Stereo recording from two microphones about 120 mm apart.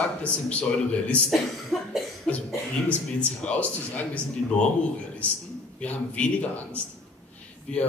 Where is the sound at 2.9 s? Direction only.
10° left (ahead or behind).